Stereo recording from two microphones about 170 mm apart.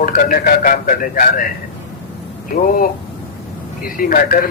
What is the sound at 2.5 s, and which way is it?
Speech, 55° left (ahead or behind).